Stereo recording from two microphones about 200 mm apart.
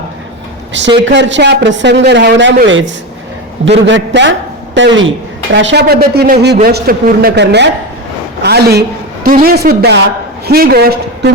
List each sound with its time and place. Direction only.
1.0 s a man's voice: 65° right (ahead or behind)
5.5 s a man's voice: 55° right (ahead or behind)